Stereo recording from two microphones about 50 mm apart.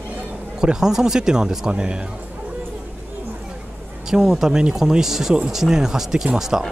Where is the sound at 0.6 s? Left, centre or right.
Centre.